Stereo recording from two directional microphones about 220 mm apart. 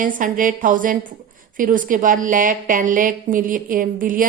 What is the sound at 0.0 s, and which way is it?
A woman's voice, 40° right (ahead or behind).